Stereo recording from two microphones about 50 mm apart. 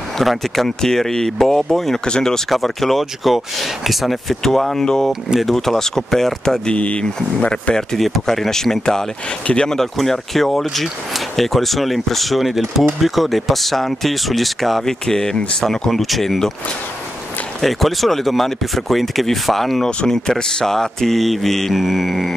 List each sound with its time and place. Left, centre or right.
0.2 s speech: centre
2.5 s speech: centre
6.8 s speech: left
7.9 s speech: centre
9.5 s speech: centre
9.8 s speech: centre
15.9 s speech: centre
17.6 s speech: centre